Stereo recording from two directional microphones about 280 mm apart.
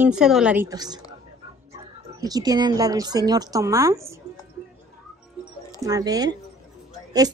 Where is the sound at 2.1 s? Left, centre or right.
Centre.